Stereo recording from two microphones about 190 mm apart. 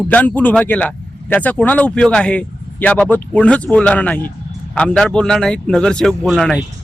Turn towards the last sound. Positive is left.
turn(degrees=0)  # may be behind; listen again after turning